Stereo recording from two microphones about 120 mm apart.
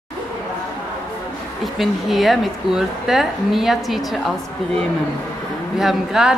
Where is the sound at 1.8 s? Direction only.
Centre (ahead or behind).